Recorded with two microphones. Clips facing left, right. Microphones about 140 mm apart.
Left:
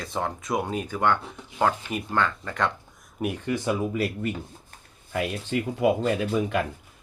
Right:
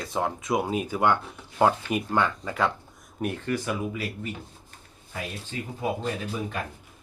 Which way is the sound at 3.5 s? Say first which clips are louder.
Left 4 dB; 25° left (ahead or behind).